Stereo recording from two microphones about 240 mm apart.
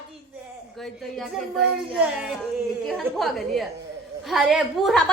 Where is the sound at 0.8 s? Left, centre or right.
Centre.